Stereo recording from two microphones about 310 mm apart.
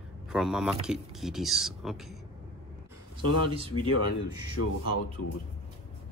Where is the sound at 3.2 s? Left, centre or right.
Left.